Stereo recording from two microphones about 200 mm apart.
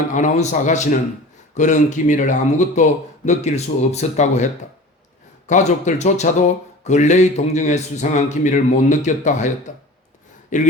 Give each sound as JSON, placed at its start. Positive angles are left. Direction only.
{"t": 0.1, "sound": "a man's voice", "side_deg": 40}
{"t": 5.5, "sound": "a man's voice", "side_deg": 40}
{"t": 10.5, "sound": "a man's voice", "side_deg": 40}